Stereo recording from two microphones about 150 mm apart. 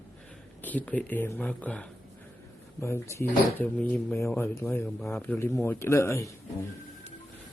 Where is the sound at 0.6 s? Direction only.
10° left (ahead or behind).